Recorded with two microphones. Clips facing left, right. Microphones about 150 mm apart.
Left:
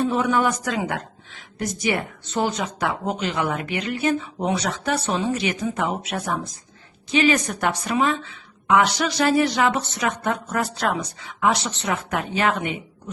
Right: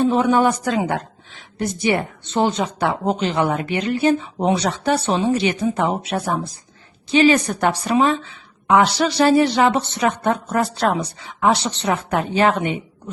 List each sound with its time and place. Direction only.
0.0 s a woman's voice: 30° right (ahead or behind)